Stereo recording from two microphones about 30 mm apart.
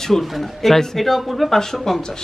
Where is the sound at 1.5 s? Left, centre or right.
Centre.